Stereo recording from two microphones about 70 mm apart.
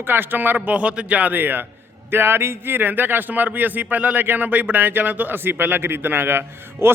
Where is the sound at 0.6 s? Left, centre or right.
Centre.